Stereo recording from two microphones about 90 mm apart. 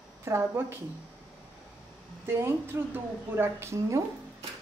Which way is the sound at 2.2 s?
25° right (ahead or behind).